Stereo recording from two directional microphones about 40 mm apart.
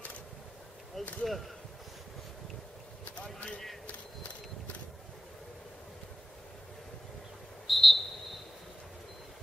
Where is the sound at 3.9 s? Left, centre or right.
Left.